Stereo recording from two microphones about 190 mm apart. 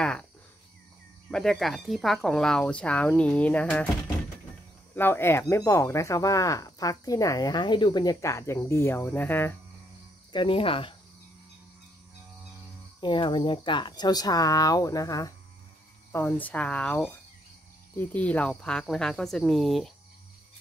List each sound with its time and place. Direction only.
0.0 s speech: 5° left (ahead or behind)
1.3 s speech: 5° left (ahead or behind)
4.9 s speech: 10° left (ahead or behind)
10.3 s speech: 25° left (ahead or behind)
13.0 s speech: 25° left (ahead or behind); by 19.9 s centre (ahead or behind)